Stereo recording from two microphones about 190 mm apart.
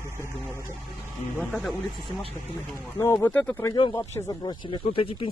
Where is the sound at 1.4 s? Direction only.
5° left (ahead or behind).